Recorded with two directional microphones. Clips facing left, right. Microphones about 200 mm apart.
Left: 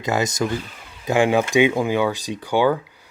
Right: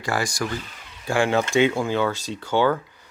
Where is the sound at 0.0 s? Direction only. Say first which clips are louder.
Left 4 dB; 20° left (ahead or behind).